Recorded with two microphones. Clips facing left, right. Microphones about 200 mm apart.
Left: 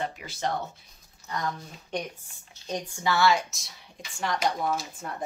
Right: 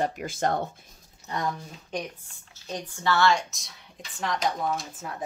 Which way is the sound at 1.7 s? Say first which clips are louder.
Even; 5° right (ahead or behind).